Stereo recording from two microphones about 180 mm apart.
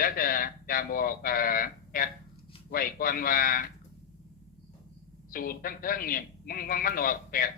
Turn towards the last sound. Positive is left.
turn(degrees=50)  # may be behind; listen again after turning